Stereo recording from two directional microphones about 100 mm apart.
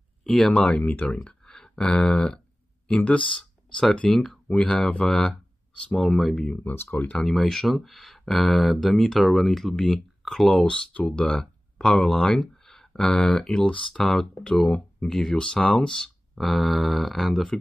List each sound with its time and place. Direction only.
0.2 s speech: 5° left (ahead or behind)
6.6 s speech: 20° left (ahead or behind)
7.2 s speech: 5° left (ahead or behind)